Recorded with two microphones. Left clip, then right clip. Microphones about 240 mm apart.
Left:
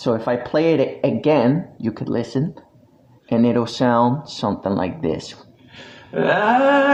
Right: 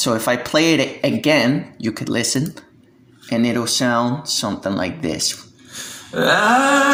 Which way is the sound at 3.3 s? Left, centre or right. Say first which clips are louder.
Left 1 dB; centre.